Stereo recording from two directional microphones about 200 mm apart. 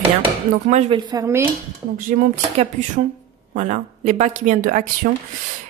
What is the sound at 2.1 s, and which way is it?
A woman's voice, 35° right (ahead or behind).